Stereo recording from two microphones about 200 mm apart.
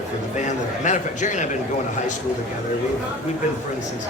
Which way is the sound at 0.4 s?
35° left (ahead or behind).